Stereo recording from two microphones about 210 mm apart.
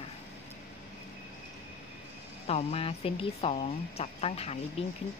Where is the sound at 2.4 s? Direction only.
30° left (ahead or behind).